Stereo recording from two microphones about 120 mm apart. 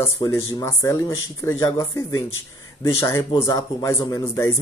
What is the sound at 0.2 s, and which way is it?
Speech, 30° left (ahead or behind).